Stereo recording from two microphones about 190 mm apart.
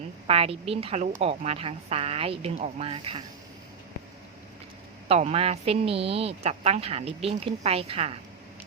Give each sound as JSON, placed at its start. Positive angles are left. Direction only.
{"t": 0.3, "sound": "speech", "side_deg": -30}
{"t": 5.0, "sound": "speech", "side_deg": -30}